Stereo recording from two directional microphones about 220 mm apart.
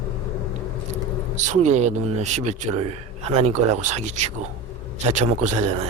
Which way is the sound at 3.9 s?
30° right (ahead or behind).